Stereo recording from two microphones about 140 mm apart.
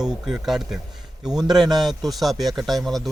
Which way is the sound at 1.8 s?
Centre (ahead or behind).